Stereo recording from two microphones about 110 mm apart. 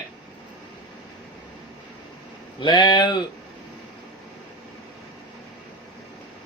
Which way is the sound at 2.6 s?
45° left (ahead or behind).